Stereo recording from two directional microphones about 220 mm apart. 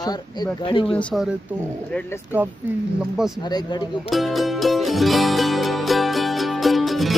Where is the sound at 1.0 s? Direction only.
5° left (ahead or behind).